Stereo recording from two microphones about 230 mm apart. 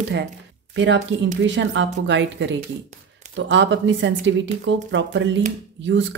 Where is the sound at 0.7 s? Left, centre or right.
Right.